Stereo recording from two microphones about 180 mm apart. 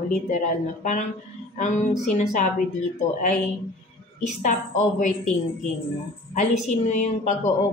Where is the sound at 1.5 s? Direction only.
40° left (ahead or behind).